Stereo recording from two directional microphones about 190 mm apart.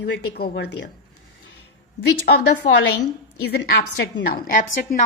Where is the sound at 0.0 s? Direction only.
60° left (ahead or behind).